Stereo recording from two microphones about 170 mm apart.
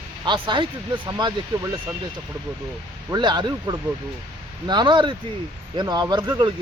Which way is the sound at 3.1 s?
25° right (ahead or behind).